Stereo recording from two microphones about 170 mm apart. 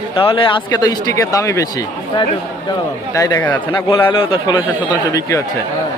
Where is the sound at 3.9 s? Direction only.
30° left (ahead or behind).